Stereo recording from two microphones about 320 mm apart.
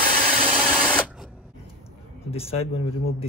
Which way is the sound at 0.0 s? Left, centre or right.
Right.